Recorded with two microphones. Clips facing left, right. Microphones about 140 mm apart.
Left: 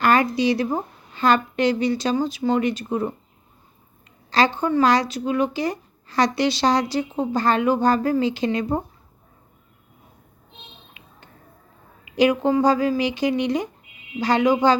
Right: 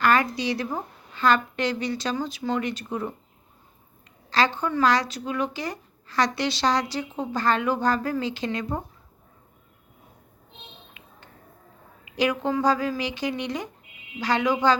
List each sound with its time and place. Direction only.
0.0 s a sound: 15° left (ahead or behind)
1.1 s a woman's voice: 15° left (ahead or behind)
4.3 s a woman's voice: 15° left (ahead or behind)
12.1 s a woman's voice: 15° left (ahead or behind)